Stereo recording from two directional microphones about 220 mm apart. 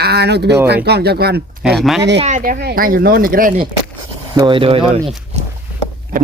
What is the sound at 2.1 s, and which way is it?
Speech, 30° right (ahead or behind).